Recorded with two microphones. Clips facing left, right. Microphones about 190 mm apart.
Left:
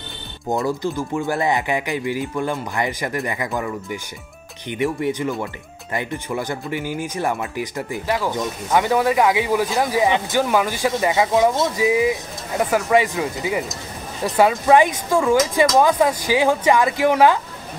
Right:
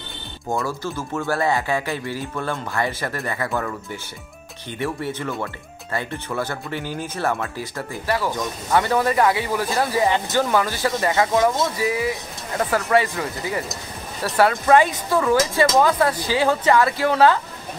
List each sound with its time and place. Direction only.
0.5 s speech: 20° left (ahead or behind)